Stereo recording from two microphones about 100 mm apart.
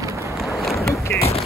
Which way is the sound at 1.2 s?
90° left.